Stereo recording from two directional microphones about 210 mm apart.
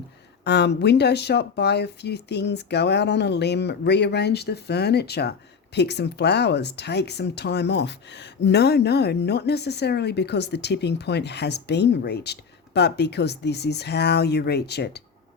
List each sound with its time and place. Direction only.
0.4 s speech: 55° left (ahead or behind)